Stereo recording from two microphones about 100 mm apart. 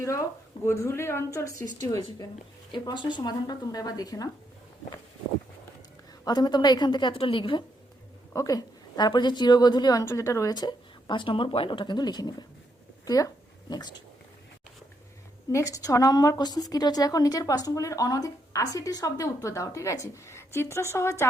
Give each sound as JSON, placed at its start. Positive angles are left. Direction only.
{"t": 0.6, "sound": "speech", "side_deg": 30}
{"t": 2.7, "sound": "a woman's voice", "side_deg": 50}
{"t": 6.2, "sound": "speech", "side_deg": 45}
{"t": 7.1, "sound": "a woman's voice", "side_deg": 65}
{"t": 8.3, "sound": "speech", "side_deg": 35}
{"t": 10.1, "sound": "a woman's voice", "side_deg": 30}
{"t": 10.5, "sound": "speech", "side_deg": 45}
{"t": 13.1, "sound": "a sound", "side_deg": 40}
{"t": 15.5, "sound": "a woman's voice", "side_deg": 35}